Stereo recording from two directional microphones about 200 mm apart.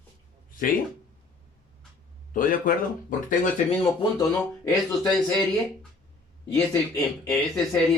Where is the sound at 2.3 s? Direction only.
45° left (ahead or behind).